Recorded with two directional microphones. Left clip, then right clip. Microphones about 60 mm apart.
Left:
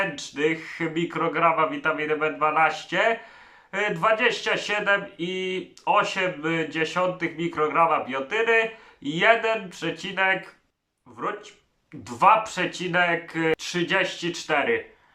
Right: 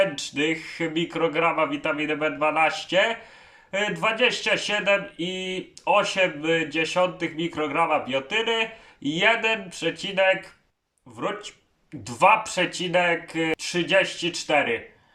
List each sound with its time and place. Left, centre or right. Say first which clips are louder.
0.0 s speech: right 2 dB; right